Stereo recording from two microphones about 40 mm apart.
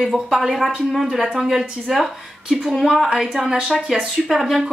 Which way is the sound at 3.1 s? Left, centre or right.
Centre.